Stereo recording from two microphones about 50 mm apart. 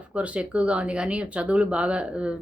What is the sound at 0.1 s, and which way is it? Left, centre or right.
Speech, right.